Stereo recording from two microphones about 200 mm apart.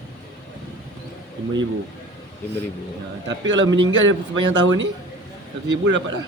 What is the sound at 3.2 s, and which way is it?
A man's voice, 65° right (ahead or behind).